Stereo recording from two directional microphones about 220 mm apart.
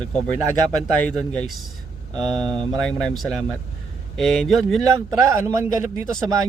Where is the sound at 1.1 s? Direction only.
5° left (ahead or behind).